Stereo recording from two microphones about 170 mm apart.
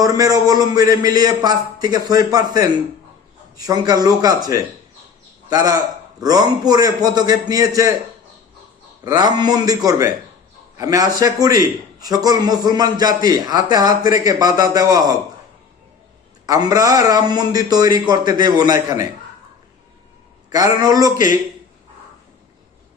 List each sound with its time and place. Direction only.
0.0 s a man's voice: 20° right (ahead or behind)
9.0 s a man's voice: 25° right (ahead or behind)
16.5 s a man's voice: 20° right (ahead or behind)
20.5 s a man's voice: 20° right (ahead or behind)